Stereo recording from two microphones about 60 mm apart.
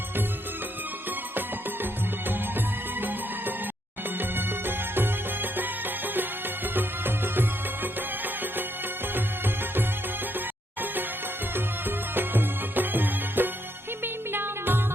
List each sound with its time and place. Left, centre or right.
2.6 s music: right
6.7 s music: right
11.5 s music: right